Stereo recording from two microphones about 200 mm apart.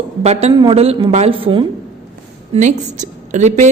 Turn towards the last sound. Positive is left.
turn(degrees=-35)  # may be behind; listen again after turning